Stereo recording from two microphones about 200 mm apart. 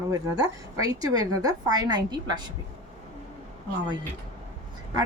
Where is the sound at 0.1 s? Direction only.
15° right (ahead or behind).